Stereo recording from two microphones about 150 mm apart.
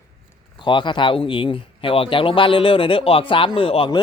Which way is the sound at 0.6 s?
30° left (ahead or behind).